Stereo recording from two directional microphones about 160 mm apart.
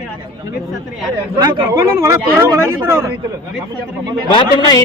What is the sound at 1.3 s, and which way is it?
Speech, 20° right (ahead or behind).